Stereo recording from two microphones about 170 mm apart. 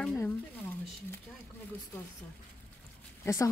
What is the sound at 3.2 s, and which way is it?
Speech, 15° left (ahead or behind).